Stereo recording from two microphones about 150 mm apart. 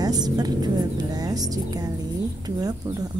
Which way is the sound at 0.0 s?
25° right (ahead or behind).